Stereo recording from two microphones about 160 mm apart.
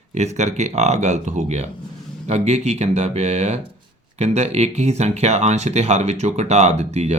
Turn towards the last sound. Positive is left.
turn(degrees=-45)  # may be behind; listen again after turning